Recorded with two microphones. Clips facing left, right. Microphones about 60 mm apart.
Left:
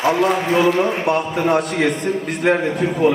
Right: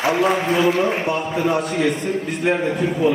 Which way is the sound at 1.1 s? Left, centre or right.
Left.